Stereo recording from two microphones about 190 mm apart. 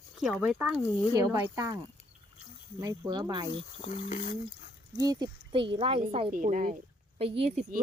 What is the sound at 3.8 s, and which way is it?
Speech, 40° left (ahead or behind).